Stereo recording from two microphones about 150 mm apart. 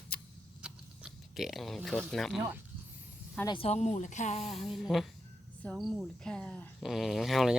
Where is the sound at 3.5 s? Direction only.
40° left (ahead or behind).